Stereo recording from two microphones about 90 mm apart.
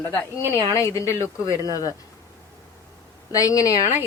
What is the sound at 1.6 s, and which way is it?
Speech, 45° left (ahead or behind).